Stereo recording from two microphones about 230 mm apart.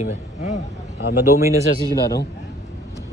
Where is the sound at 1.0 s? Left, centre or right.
Left.